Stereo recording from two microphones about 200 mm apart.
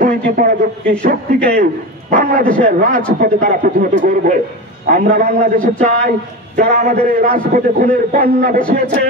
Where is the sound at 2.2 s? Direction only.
45° right (ahead or behind).